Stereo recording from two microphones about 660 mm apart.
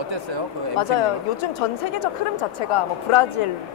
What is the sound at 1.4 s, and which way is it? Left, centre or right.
A woman's voice, left.